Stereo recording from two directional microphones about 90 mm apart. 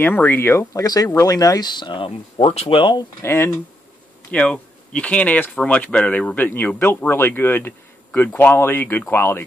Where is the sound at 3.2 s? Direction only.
25° left (ahead or behind).